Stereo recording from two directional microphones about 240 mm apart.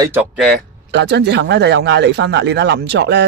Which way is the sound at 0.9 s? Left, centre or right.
Right.